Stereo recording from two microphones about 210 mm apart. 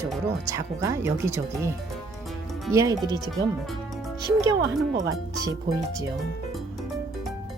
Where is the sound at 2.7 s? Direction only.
15° right (ahead or behind).